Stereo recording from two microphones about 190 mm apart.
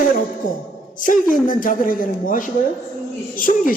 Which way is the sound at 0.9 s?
45° left (ahead or behind).